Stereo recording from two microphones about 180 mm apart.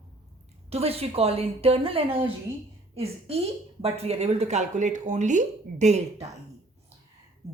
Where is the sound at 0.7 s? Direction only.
35° right (ahead or behind).